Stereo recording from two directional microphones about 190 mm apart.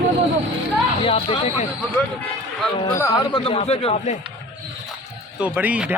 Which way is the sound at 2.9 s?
20° left (ahead or behind).